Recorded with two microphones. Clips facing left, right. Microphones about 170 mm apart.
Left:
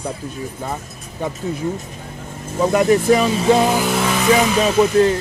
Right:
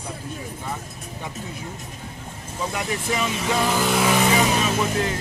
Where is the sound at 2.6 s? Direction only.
50° left (ahead or behind).